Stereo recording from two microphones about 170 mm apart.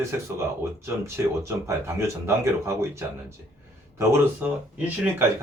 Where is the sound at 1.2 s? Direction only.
15° right (ahead or behind).